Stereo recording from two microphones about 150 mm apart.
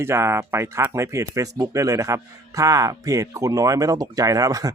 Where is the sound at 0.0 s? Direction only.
15° right (ahead or behind).